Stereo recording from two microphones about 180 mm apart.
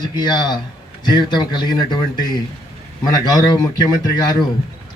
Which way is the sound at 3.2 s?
20° left (ahead or behind).